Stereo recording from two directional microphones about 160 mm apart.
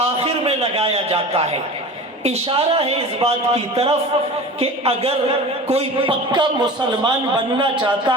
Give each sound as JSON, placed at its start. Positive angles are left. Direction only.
{"t": 0.2, "sound": "a man's voice", "side_deg": -35}